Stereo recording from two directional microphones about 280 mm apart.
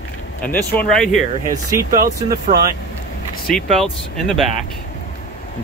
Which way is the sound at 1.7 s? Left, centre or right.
Right.